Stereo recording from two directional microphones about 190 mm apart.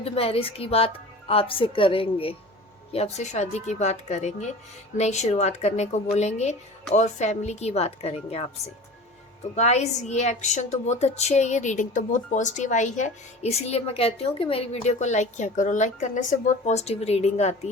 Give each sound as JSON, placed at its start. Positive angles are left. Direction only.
{"t": 0.0, "sound": "a woman's voice", "side_deg": 30}
{"t": 9.6, "sound": "a woman's voice", "side_deg": 35}